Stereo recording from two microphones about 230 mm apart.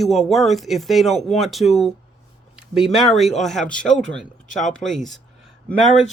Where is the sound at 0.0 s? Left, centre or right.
Centre.